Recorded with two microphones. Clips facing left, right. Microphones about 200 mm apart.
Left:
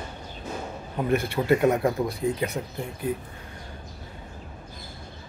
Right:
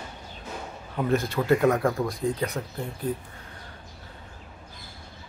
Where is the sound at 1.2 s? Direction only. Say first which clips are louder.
Left 1 dB; 20° left (ahead or behind).